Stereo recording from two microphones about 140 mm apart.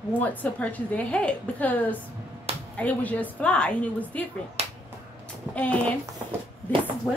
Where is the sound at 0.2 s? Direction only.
10° left (ahead or behind).